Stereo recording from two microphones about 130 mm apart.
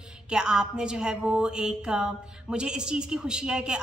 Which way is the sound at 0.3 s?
5° right (ahead or behind).